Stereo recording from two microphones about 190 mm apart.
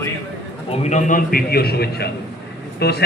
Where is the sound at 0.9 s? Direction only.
40° left (ahead or behind).